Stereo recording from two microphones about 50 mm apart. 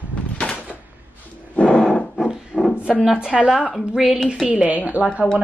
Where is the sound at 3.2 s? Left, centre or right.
Centre.